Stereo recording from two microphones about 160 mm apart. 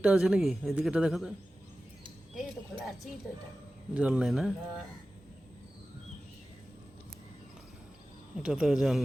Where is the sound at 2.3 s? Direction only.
Centre (ahead or behind).